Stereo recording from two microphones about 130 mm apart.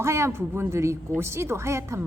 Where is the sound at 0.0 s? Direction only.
20° right (ahead or behind).